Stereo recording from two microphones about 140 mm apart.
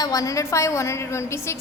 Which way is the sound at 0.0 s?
25° left (ahead or behind).